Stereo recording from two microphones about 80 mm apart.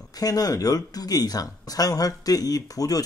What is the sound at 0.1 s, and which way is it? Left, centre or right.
Speech, left.